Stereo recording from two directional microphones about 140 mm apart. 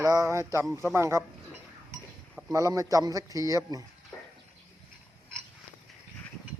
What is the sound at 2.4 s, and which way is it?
A man's voice, 25° right (ahead or behind).